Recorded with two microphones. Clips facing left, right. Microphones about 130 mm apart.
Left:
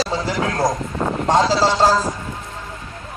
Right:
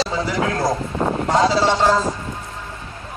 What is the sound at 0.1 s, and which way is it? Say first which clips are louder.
Speech: even; 30° left (ahead or behind).